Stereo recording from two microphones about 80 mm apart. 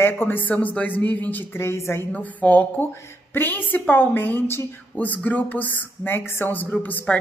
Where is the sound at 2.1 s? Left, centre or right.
Centre.